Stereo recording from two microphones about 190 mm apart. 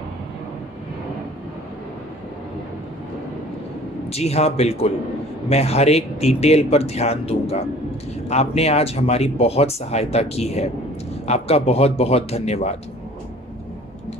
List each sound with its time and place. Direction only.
4.1 s speech: 35° left (ahead or behind)